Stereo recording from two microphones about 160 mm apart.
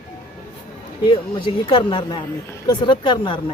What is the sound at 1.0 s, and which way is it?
Speech, 30° left (ahead or behind).